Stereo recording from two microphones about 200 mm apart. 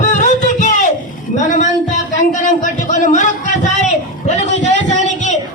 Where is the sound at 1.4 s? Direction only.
35° left (ahead or behind).